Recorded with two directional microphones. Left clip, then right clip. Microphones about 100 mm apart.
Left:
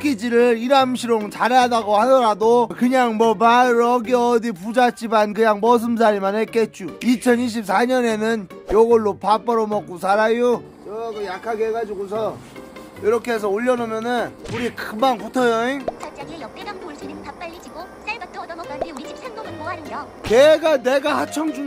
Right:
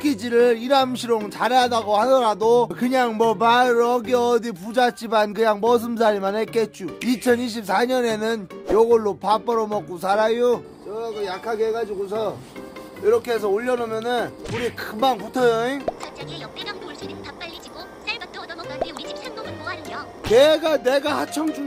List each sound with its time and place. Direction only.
0.0 s speech: 30° left (ahead or behind)
13.0 s speech: 75° left (ahead or behind); by 15.8 s 40° left (ahead or behind)
19.6 s music: centre (ahead or behind)
20.3 s speech: 40° left (ahead or behind)